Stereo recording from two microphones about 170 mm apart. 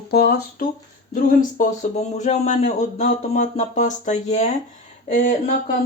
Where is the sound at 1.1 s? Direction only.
50° left (ahead or behind).